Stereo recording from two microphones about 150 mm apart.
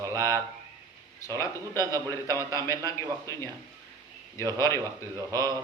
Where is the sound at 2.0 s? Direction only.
20° left (ahead or behind).